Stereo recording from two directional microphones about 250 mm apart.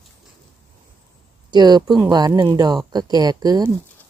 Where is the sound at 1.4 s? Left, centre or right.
Centre.